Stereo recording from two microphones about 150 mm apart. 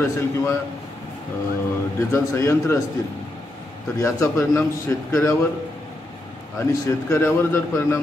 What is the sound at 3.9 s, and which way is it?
A man's voice, 20° left (ahead or behind).